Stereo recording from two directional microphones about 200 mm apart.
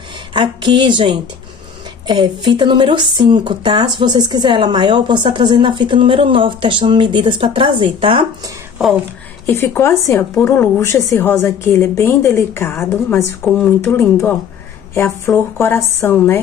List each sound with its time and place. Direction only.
0.3 s speech: 25° right (ahead or behind)
9.5 s speech: 10° left (ahead or behind)
15.5 s speech: 15° left (ahead or behind)